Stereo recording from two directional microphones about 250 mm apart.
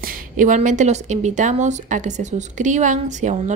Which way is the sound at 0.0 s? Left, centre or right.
Right.